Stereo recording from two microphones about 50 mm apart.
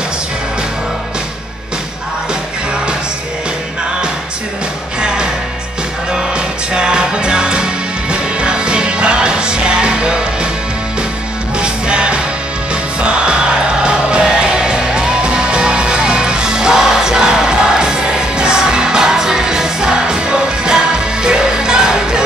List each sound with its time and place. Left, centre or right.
5.0 s music: centre
6.3 s music: centre
11.5 s music: centre